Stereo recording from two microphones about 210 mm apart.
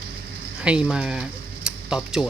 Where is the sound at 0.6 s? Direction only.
5° right (ahead or behind).